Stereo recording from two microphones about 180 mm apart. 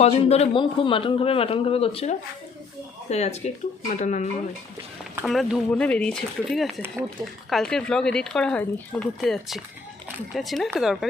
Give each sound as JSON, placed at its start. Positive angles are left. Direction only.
{"t": 0.0, "sound": "a man's voice", "side_deg": 35}
{"t": 5.2, "sound": "speech", "side_deg": 0}